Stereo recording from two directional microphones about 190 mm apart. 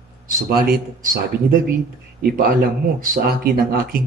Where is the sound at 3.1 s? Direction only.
55° right (ahead or behind).